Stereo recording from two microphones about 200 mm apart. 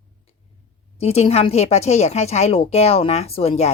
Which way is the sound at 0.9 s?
30° left (ahead or behind).